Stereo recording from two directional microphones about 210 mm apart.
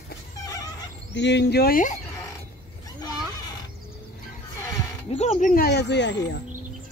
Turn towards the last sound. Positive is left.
turn(degrees=55)  # may be behind; listen again after turning